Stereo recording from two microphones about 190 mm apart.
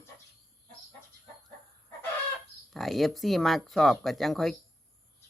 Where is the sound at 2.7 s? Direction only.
Centre (ahead or behind).